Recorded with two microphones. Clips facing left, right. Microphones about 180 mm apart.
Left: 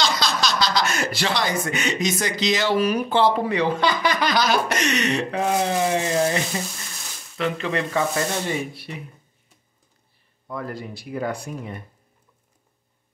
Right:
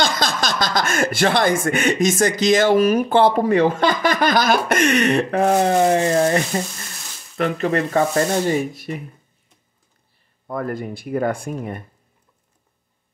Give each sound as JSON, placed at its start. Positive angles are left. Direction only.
{"t": 0.0, "sound": "speech", "side_deg": -50}
{"t": 10.4, "sound": "speech", "side_deg": -50}